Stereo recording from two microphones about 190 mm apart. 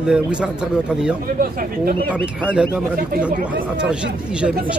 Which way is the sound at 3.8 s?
5° right (ahead or behind).